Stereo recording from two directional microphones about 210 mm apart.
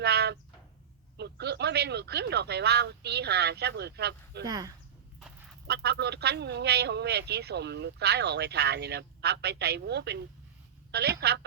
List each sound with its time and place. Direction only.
0.0 s a sound: 50° right (ahead or behind)
1.1 s speech: 55° right (ahead or behind)
4.4 s speech: 20° right (ahead or behind)
5.6 s speech: 50° right (ahead or behind)